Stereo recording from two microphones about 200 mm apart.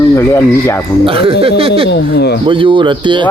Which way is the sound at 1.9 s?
55° left (ahead or behind).